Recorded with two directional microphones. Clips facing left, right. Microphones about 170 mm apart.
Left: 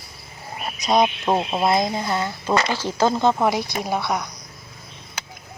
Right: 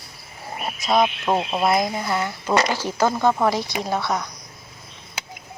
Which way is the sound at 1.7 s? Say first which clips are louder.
Even; 20° left (ahead or behind).